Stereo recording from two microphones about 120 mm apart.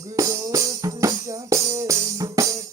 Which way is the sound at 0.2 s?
30° right (ahead or behind).